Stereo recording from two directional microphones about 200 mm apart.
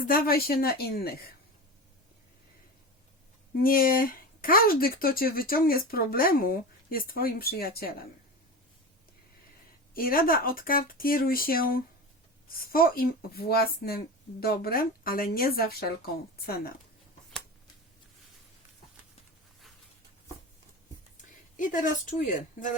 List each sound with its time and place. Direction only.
0.1 s speech: 50° left (ahead or behind)
3.6 s speech: 45° left (ahead or behind)
9.9 s speech: 45° left (ahead or behind)
21.5 s a woman's voice: 40° left (ahead or behind)